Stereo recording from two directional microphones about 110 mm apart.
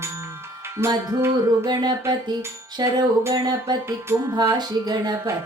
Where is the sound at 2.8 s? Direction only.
40° right (ahead or behind).